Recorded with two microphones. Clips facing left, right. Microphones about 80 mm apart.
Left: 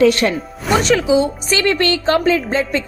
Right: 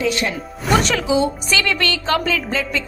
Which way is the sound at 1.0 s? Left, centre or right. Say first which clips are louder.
Left 3 dB; left.